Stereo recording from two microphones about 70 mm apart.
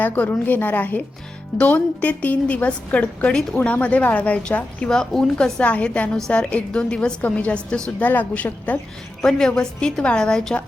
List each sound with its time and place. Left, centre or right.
0.0 s a woman's voice: left
9.2 s a woman's voice: centre